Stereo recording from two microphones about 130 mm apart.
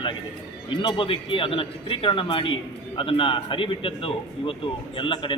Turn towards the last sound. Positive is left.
turn(degrees=40)  # may be behind; listen again after turning